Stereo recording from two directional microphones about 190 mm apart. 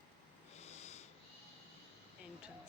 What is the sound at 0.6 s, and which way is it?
Snort, 35° left (ahead or behind).